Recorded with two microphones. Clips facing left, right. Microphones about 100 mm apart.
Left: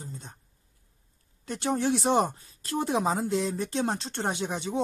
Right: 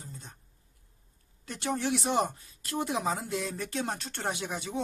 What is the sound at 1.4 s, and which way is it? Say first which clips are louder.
A woman's voice: left 4 dB; 30° left (ahead or behind).